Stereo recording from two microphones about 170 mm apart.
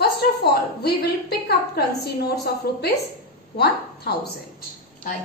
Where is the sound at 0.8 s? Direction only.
70° left (ahead or behind).